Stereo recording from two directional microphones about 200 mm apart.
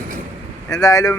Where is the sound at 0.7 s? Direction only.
15° left (ahead or behind).